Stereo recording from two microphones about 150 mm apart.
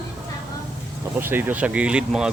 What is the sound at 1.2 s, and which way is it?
Speech, 15° right (ahead or behind).